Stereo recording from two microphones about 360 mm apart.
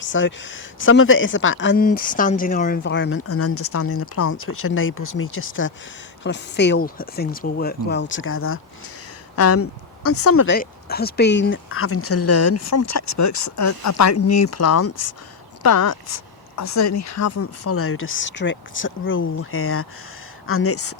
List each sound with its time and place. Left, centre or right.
0.0 s a woman's voice: left